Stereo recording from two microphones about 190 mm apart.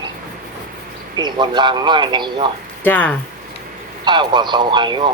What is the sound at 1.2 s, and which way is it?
Speech, 25° right (ahead or behind).